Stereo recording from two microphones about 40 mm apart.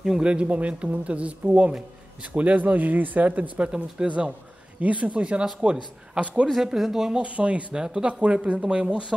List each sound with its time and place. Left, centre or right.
0.2 s speech: right
2.3 s speech: right
5.4 s speech: centre
6.8 s speech: centre
7.2 s speech: right
7.8 s speech: centre